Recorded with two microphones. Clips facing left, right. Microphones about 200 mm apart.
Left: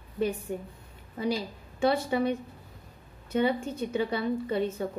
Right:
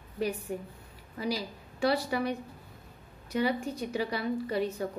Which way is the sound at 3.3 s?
25° left (ahead or behind).